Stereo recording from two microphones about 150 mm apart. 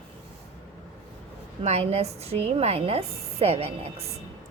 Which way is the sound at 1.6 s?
45° right (ahead or behind).